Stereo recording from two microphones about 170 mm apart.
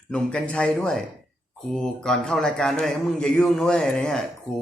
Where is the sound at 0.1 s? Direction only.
5° left (ahead or behind).